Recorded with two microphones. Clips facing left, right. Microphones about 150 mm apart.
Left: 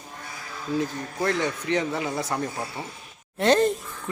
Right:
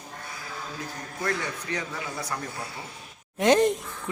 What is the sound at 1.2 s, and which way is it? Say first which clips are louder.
A man's voice: left 5 dB; 25° left (ahead or behind).